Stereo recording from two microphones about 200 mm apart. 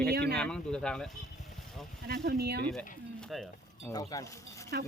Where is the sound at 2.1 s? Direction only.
50° right (ahead or behind).